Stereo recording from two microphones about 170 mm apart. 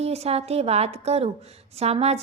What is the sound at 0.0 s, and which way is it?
A woman's voice, 40° right (ahead or behind).